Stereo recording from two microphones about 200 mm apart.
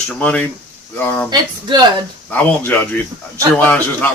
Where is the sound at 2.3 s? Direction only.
10° left (ahead or behind).